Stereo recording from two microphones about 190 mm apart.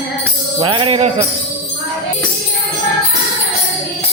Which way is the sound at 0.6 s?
25° right (ahead or behind).